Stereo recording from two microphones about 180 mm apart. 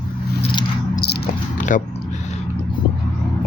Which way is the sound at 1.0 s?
60° left (ahead or behind).